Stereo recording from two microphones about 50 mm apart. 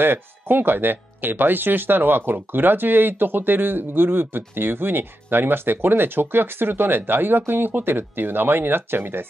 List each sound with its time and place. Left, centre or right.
0.0 s speech: right